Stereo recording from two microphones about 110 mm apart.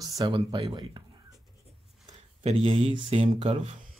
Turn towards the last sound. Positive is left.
turn(degrees=-60)  # may be behind; listen again after turning